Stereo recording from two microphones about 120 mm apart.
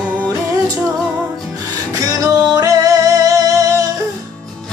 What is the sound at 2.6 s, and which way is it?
Music, 30° right (ahead or behind).